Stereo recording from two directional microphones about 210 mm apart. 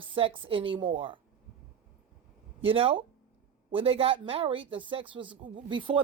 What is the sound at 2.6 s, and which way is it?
Speech, 25° right (ahead or behind).